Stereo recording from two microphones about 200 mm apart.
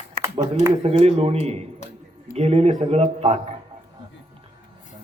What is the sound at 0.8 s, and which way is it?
A man's voice, 30° right (ahead or behind).